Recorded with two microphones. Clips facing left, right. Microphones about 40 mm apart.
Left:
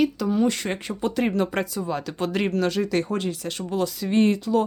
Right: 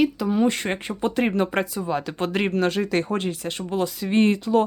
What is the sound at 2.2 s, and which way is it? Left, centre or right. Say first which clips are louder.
Speech: even; right.